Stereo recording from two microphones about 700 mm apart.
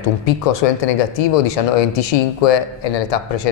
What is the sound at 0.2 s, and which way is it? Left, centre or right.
Speech, left.